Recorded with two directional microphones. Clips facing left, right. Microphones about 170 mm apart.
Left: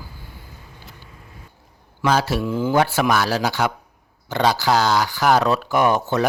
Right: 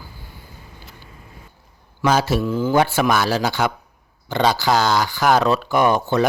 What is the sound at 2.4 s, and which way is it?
Speech, 10° left (ahead or behind).